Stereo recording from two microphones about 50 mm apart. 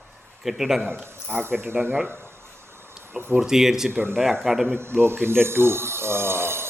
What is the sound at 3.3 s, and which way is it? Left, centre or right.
Speech, centre.